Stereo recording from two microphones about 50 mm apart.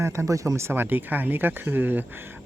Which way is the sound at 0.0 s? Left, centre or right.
Right.